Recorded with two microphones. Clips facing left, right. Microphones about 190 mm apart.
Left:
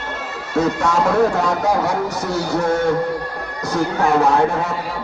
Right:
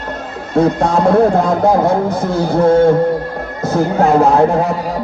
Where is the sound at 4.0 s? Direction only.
30° right (ahead or behind).